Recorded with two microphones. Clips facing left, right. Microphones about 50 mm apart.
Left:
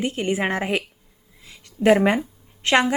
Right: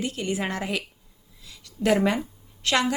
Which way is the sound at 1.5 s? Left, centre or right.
Left.